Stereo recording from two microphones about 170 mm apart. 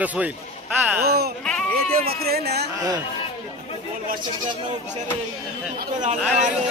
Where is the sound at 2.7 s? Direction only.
20° right (ahead or behind).